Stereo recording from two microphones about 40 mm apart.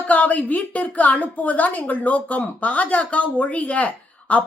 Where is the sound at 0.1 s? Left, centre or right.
Left.